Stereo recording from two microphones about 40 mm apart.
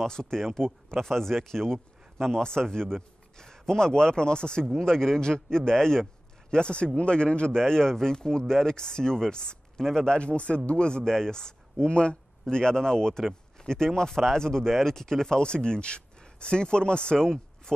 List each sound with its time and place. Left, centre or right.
0.0 s speech: centre